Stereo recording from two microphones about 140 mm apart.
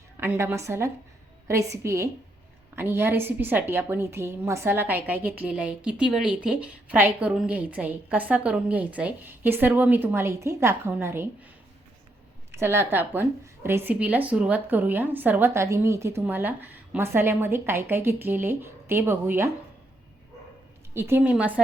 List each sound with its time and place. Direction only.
0.2 s a woman's voice: 15° right (ahead or behind)
12.5 s a woman's voice: 20° right (ahead or behind)
20.9 s a woman's voice: 15° right (ahead or behind)